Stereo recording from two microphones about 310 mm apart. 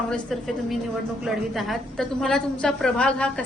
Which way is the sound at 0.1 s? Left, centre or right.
Centre.